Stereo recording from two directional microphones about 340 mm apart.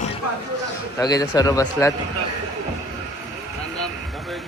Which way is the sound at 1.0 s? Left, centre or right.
Centre.